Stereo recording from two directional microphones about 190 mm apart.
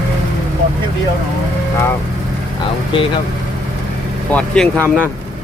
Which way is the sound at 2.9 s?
25° left (ahead or behind).